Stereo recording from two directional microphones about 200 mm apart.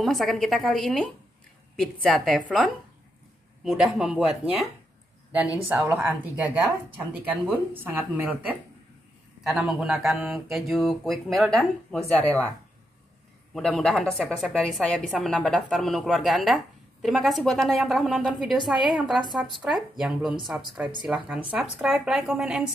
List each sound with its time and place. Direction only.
0.0 s a woman's voice: centre (ahead or behind)
3.6 s a woman's voice: 5° right (ahead or behind)
5.7 s a woman's voice: 10° right (ahead or behind); by 12.5 s 10° left (ahead or behind)
13.6 s a woman's voice: 5° left (ahead or behind)